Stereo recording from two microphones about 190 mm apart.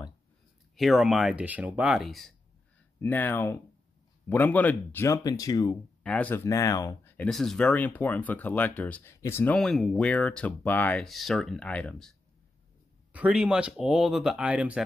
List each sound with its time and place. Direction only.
0.7 s speech: centre (ahead or behind); by 5.8 s 20° left (ahead or behind)
6.0 s speech: 5° left (ahead or behind)
13.1 s speech: 5° right (ahead or behind)